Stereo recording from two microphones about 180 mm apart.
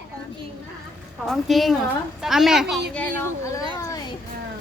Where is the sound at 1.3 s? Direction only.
Centre (ahead or behind).